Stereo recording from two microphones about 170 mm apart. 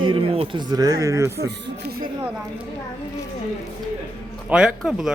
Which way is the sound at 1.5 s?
80° right.